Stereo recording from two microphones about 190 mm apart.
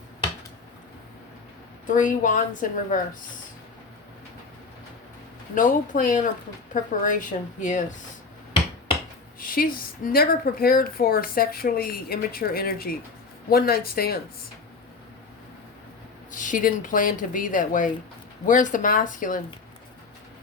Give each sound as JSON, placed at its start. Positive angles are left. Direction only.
{"t": 1.9, "sound": "speech", "side_deg": 45}
{"t": 5.5, "sound": "speech", "side_deg": 45}
{"t": 9.4, "sound": "speech", "side_deg": 50}
{"t": 16.3, "sound": "speech", "side_deg": 40}